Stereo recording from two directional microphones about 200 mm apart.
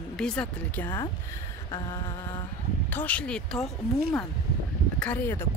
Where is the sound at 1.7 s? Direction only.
20° left (ahead or behind).